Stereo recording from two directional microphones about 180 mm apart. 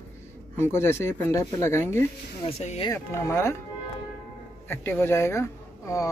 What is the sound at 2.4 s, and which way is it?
Speech, 35° left (ahead or behind).